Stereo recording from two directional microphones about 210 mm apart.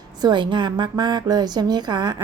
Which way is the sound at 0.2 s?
20° right (ahead or behind).